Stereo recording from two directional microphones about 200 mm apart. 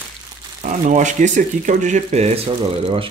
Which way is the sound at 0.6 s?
35° right (ahead or behind).